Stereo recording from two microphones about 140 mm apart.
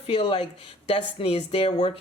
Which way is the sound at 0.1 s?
40° left (ahead or behind).